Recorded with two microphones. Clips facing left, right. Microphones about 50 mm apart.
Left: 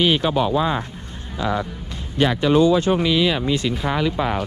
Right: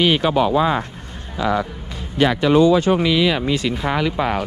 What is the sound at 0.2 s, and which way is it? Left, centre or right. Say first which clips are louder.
Speech: right 3 dB; right.